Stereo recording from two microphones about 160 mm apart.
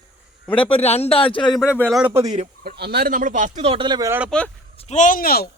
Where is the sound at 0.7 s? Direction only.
40° left (ahead or behind).